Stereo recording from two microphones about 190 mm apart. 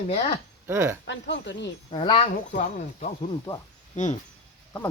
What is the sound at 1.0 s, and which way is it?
Speech, 70° left (ahead or behind).